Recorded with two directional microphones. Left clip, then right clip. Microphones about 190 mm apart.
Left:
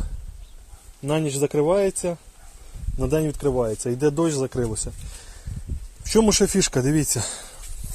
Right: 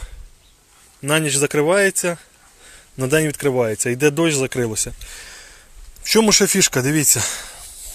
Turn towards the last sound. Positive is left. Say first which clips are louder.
# right 8 dB
turn(degrees=5)  # may be behind; listen again after turning